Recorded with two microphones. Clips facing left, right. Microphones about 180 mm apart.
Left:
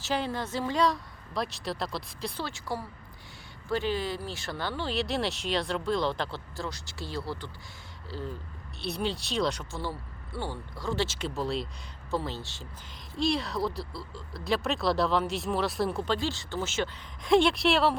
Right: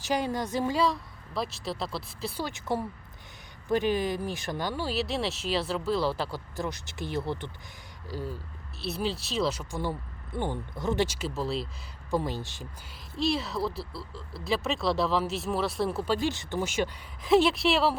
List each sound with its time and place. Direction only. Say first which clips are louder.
0.0 s speech: right 2 dB; 15° right (ahead or behind)
0.8 s speech: even; centre (ahead or behind)
2.4 s speech: right 6 dB; 20° right (ahead or behind)
6.6 s speech: right 4 dB; 20° right (ahead or behind)
8.8 s speech: even; centre (ahead or behind)
10.3 s speech: right 4 dB; 20° right (ahead or behind)
11.3 s speech: even; centre (ahead or behind)
12.1 s speech: right 3 dB; 15° right (ahead or behind)
13.1 s speech: even; centre (ahead or behind)